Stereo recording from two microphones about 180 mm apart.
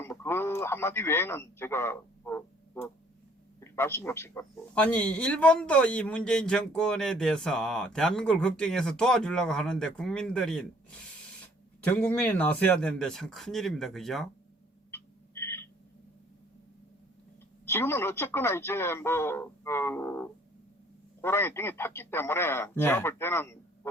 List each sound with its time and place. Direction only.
0.0 s a man's voice: 15° left (ahead or behind)
3.6 s a man's voice: 15° left (ahead or behind)
11.8 s a man's voice: 10° left (ahead or behind)
14.8 s a sound: 15° left (ahead or behind)
17.7 s a man's voice: 15° left (ahead or behind)